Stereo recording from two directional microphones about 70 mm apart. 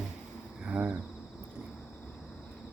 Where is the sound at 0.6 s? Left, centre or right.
Centre.